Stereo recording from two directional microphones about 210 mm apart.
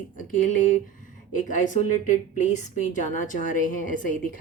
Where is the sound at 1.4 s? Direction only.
40° left (ahead or behind).